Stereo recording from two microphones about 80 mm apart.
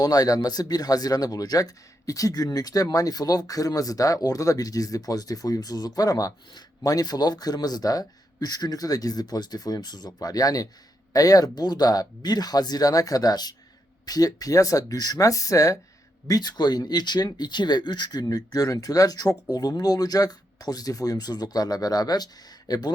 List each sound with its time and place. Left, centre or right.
0.0 s speech: left
16.2 s speech: left